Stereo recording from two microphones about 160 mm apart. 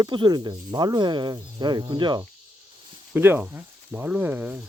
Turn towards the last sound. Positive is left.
turn(degrees=-10)  # may be behind; listen again after turning